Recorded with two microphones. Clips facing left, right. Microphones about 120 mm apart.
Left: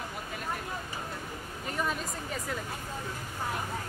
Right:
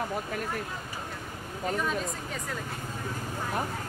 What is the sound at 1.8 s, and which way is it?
Speech, centre (ahead or behind).